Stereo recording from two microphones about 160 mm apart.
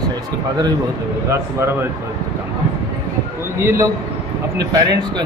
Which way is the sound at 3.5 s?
15° right (ahead or behind).